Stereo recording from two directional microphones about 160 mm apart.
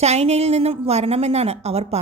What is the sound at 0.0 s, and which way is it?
A woman's voice, 40° right (ahead or behind).